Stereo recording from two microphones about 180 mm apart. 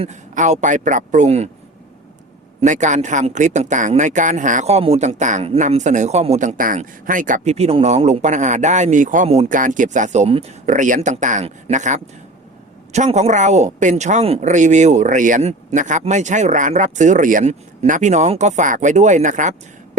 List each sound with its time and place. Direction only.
0.0 s a man's voice: 40° right (ahead or behind)
2.6 s speech: 40° right (ahead or behind)